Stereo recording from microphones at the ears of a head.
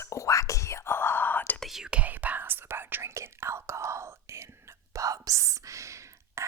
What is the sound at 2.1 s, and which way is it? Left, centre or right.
Whispering, right.